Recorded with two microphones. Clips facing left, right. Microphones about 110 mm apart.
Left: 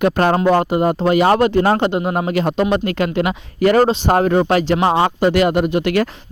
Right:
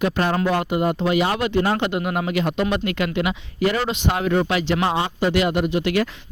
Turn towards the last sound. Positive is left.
turn(degrees=50)  # may be behind; listen again after turning